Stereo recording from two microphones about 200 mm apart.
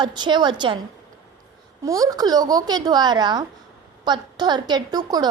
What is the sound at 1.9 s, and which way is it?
A woman's voice, 15° right (ahead or behind).